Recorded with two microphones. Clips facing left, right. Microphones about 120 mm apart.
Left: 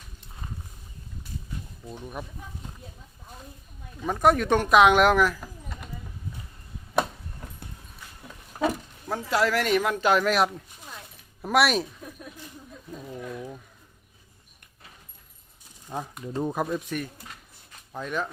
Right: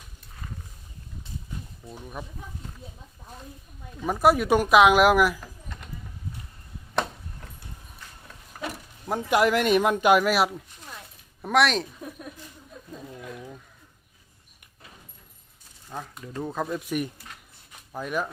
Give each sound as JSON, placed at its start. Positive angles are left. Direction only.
{"t": 1.9, "sound": "speech", "side_deg": 5}
{"t": 4.0, "sound": "speech", "side_deg": -5}
{"t": 9.0, "sound": "speech", "side_deg": -15}
{"t": 11.4, "sound": "speech", "side_deg": 5}
{"t": 15.9, "sound": "speech", "side_deg": 15}
{"t": 16.9, "sound": "speech", "side_deg": -10}